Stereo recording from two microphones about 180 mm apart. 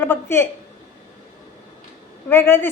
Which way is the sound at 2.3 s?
15° left (ahead or behind).